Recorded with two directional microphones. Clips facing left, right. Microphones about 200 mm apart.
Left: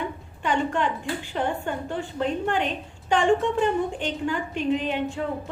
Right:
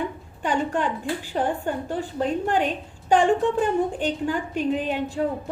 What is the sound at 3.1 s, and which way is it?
A woman's voice, 40° right (ahead or behind).